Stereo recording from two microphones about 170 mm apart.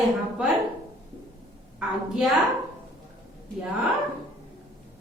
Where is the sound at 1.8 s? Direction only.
Centre (ahead or behind).